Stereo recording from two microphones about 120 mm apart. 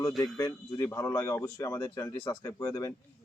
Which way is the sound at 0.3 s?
25° left (ahead or behind).